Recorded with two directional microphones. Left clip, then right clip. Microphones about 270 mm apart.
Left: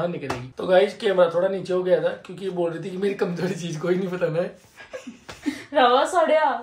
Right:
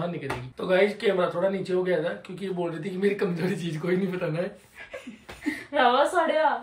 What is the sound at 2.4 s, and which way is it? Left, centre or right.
Speech, centre.